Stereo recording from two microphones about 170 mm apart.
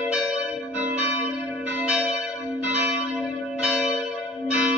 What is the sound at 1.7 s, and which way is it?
Church bell, 5° right (ahead or behind).